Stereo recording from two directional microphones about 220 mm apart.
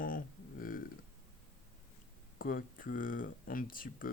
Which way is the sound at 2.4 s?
40° left (ahead or behind).